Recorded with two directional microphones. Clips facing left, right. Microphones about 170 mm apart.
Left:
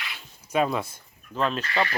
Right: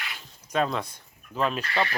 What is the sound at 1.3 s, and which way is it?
Speech, 5° right (ahead or behind).